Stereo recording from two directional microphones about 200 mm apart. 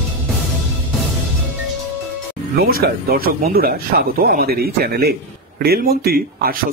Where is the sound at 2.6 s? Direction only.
50° right (ahead or behind).